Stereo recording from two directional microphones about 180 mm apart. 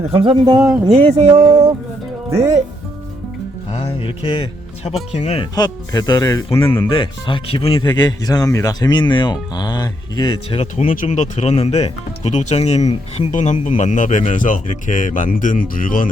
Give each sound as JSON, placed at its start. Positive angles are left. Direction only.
{"t": 0.2, "sound": "speech", "side_deg": -25}
{"t": 0.9, "sound": "speech", "side_deg": -35}
{"t": 3.8, "sound": "speech", "side_deg": 30}
{"t": 5.5, "sound": "speech", "side_deg": 20}
{"t": 10.8, "sound": "speech", "side_deg": 45}